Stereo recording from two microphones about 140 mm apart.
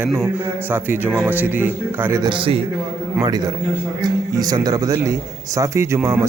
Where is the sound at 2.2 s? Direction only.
40° right (ahead or behind).